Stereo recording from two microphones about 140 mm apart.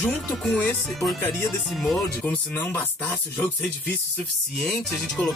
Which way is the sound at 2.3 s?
15° left (ahead or behind).